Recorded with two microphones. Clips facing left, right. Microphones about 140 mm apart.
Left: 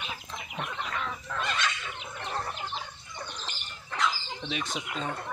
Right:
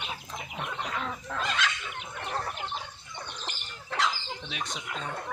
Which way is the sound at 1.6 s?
90° right.